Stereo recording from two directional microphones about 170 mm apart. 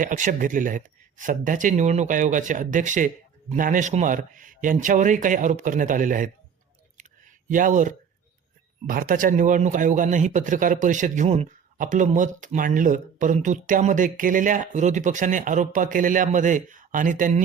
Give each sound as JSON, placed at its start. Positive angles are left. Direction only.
{"t": 0.0, "sound": "a man's voice", "side_deg": -50}
{"t": 7.4, "sound": "a man's voice", "side_deg": -50}